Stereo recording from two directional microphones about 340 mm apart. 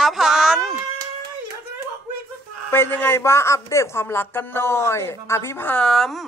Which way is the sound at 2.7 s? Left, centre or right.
Centre.